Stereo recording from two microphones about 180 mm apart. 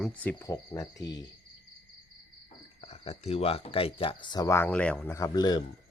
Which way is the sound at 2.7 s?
35° left (ahead or behind).